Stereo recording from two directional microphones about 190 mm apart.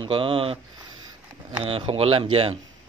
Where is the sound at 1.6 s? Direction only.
30° right (ahead or behind).